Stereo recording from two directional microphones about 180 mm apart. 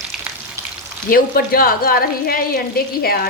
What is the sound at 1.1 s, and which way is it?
Speech, 55° left (ahead or behind).